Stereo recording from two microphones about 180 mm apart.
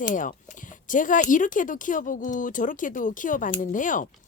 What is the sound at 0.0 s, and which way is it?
Speech, 45° left (ahead or behind).